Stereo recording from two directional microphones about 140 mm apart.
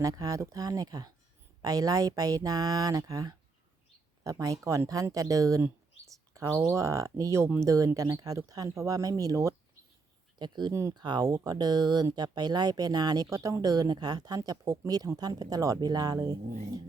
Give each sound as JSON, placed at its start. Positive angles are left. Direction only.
{"t": 0.0, "sound": "speech", "side_deg": -25}